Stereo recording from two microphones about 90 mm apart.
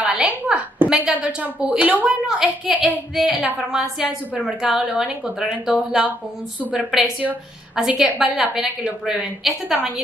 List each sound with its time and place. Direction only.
0.0 s a woman's voice: 10° right (ahead or behind)